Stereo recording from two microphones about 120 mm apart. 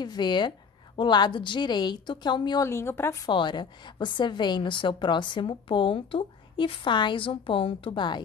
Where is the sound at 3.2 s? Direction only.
40° left (ahead or behind).